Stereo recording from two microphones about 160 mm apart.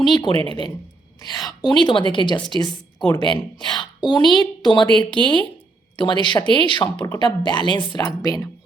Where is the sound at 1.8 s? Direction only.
30° left (ahead or behind).